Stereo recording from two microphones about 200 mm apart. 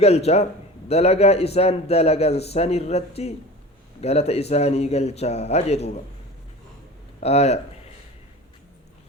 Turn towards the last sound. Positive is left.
turn(degrees=30)  # may be behind; listen again after turning